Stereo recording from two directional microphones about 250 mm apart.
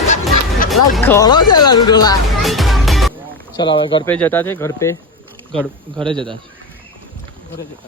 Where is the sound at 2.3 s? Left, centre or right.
Centre.